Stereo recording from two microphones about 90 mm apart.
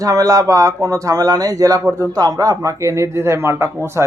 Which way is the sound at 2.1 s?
45° right (ahead or behind).